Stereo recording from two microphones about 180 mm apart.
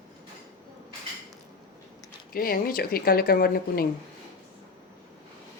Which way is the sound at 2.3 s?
55° left (ahead or behind).